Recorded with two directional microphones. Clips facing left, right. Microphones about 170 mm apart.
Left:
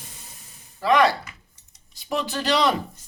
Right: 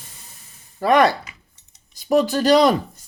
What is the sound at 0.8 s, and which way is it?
Speech, 50° right (ahead or behind).